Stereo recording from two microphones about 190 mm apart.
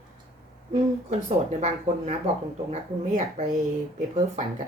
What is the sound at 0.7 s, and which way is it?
A woman's voice, 35° right (ahead or behind).